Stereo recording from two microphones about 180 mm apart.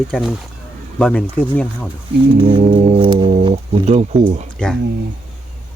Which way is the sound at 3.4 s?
35° right (ahead or behind).